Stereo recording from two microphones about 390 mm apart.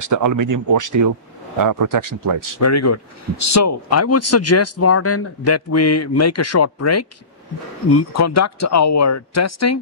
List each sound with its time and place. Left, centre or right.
0.0 s speech: right
2.6 s speech: left